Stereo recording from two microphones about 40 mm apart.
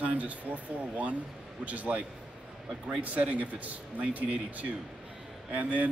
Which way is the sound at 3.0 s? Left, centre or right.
Right.